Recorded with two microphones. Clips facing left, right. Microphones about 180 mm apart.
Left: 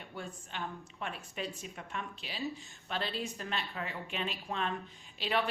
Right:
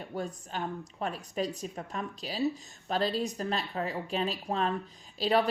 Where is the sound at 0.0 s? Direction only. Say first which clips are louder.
Right 8 dB; 40° right (ahead or behind).